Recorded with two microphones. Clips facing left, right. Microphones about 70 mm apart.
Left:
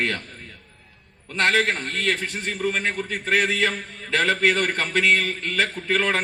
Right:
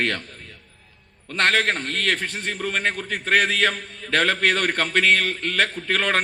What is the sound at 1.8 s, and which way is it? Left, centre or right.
Speech, left.